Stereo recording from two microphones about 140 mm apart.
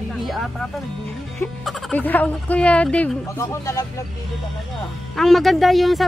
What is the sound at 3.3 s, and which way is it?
Speech, 20° left (ahead or behind).